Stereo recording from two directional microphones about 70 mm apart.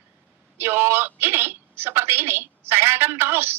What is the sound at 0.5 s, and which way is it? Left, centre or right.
A woman's voice, right.